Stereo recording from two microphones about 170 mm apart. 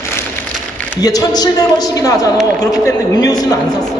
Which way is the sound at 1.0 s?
20° left (ahead or behind).